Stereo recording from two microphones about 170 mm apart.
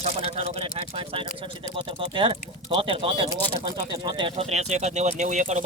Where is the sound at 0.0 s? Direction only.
35° right (ahead or behind).